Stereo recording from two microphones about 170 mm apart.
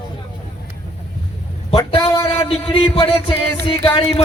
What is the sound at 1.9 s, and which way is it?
A man's voice, 35° left (ahead or behind).